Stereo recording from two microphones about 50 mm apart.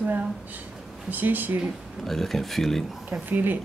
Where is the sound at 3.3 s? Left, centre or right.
Right.